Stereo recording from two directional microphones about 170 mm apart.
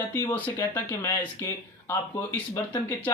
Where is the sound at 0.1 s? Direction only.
20° left (ahead or behind).